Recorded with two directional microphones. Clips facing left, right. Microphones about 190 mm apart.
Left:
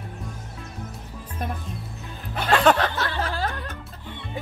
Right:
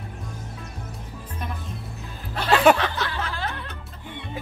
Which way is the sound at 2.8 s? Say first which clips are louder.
Left 2 dB; 40° left (ahead or behind).